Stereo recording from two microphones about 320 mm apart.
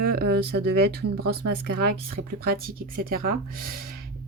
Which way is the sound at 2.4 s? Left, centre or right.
Right.